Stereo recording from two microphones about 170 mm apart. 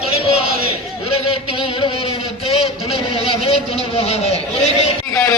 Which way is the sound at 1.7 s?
35° left (ahead or behind).